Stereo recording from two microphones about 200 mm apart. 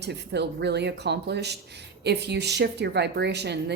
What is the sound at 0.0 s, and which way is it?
A woman's voice, 55° right (ahead or behind).